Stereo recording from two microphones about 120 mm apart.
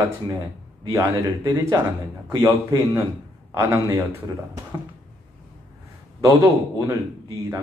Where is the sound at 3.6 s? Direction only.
25° right (ahead or behind).